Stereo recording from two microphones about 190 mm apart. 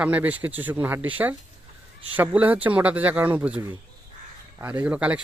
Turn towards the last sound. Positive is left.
turn(degrees=-5)  # may be behind; listen again after turning